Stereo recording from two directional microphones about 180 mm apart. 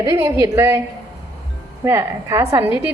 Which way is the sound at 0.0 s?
15° right (ahead or behind).